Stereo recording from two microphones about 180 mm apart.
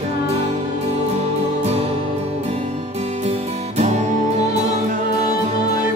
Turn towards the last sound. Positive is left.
turn(degrees=-40)  # may be behind; listen again after turning